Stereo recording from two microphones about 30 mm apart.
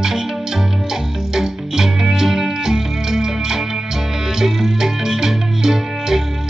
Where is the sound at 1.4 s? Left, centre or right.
Centre.